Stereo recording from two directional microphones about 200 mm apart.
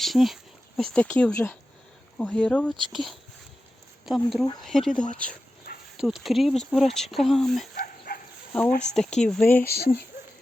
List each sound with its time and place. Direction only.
0.0 s speech: centre (ahead or behind)
5.7 s dog: 50° left (ahead or behind)
6.0 s speech: centre (ahead or behind)
7.8 s bow-wow: 45° left (ahead or behind)
8.9 s speech: 5° left (ahead or behind)
9.6 s speech: 50° left (ahead or behind)